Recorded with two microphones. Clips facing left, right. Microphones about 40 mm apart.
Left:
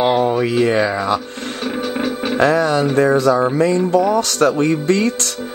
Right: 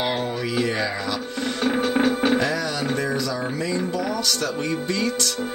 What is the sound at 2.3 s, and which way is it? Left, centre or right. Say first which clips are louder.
Music: left 8 dB; left.